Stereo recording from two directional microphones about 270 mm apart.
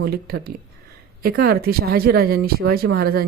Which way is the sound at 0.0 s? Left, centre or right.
Right.